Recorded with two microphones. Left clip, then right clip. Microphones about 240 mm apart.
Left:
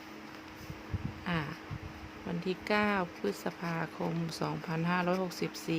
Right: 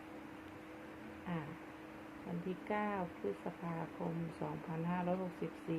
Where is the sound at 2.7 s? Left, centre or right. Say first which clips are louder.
Left 9 dB; left.